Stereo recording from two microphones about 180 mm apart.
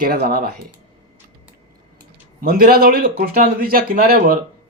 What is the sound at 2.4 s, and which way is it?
A man's voice, 55° right (ahead or behind).